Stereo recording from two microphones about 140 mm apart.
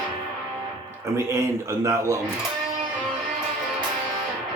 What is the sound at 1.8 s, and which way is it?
Speech, 20° right (ahead or behind).